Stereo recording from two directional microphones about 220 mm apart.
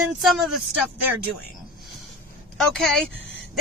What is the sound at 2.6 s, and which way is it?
Speech, centre (ahead or behind).